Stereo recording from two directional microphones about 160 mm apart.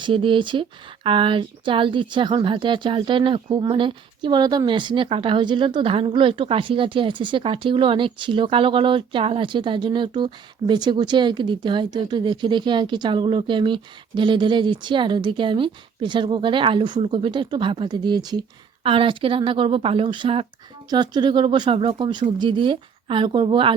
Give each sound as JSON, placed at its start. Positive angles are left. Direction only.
{"t": 0.0, "sound": "speech", "side_deg": -30}